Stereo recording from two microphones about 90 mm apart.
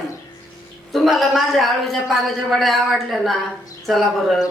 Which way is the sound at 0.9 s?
Centre (ahead or behind).